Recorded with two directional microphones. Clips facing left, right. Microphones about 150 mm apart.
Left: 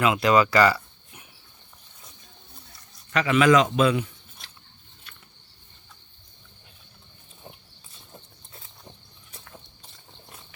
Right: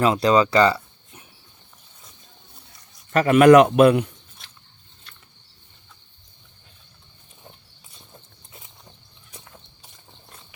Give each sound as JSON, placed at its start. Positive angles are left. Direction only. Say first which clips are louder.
{"t": 0.0, "sound": "speech", "louder": "right 2 dB", "side_deg": -35}
{"t": 3.1, "sound": "a man's voice", "louder": "right 7 dB", "side_deg": -45}
{"t": 9.3, "sound": "horse", "louder": "even", "side_deg": -15}